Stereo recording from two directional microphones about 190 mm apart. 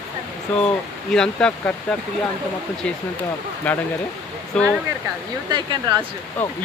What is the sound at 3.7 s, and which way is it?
Speech, 5° left (ahead or behind).